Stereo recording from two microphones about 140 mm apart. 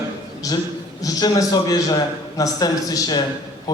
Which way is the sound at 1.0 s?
25° left (ahead or behind).